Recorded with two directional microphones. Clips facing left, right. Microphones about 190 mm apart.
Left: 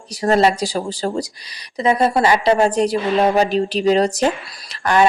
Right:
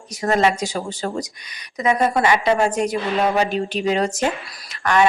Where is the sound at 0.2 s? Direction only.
35° left (ahead or behind).